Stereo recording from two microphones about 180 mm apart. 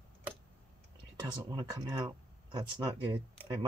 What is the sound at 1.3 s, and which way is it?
Speech, 25° right (ahead or behind).